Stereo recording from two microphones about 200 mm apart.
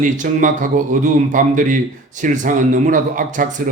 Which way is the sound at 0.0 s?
40° right (ahead or behind).